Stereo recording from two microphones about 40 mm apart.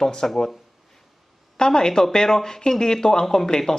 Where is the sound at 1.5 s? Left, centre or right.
Centre.